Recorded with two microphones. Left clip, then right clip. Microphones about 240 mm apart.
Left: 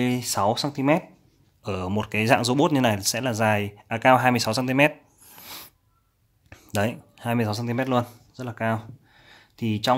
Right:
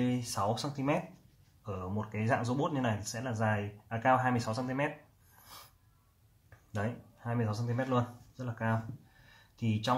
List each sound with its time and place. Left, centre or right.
0.0 s speech: left
6.7 s speech: left